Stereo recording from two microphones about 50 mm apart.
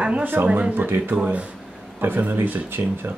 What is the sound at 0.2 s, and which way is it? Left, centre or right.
Speech, right.